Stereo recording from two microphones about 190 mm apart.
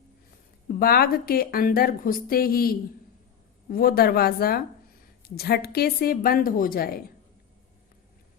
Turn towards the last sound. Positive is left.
turn(degrees=50)  # may be behind; listen again after turning